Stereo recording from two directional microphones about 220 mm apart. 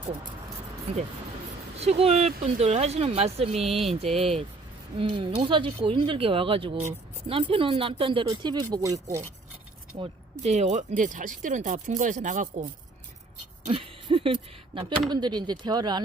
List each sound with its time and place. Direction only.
1.8 s speech: 30° right (ahead or behind)
10.0 s speech: 30° right (ahead or behind)
13.7 s speech: 25° right (ahead or behind)